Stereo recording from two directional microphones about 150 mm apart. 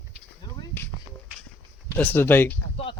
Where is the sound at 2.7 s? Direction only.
35° left (ahead or behind).